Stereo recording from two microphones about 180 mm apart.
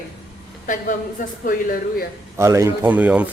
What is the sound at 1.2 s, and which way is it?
Speech, 45° left (ahead or behind).